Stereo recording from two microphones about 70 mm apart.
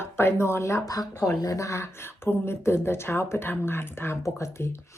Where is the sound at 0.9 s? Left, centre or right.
Left.